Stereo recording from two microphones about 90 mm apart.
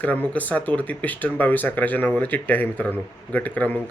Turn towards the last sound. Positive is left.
turn(degrees=15)  # may be behind; listen again after turning